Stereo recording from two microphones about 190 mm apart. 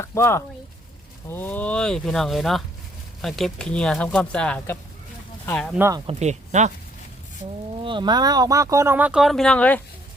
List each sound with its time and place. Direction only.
0.0 s speech: 15° left (ahead or behind)
6.1 s speech: 35° right (ahead or behind)
7.9 s speech: 25° right (ahead or behind); by 9.8 s 5° left (ahead or behind)